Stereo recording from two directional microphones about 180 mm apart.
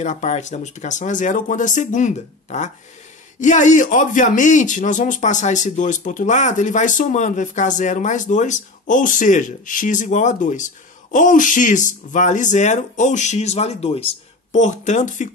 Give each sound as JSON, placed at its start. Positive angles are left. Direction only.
{"t": 0.0, "sound": "a man's voice", "side_deg": 40}